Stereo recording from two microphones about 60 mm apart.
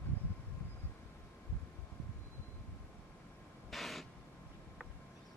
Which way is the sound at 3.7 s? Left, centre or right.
Centre.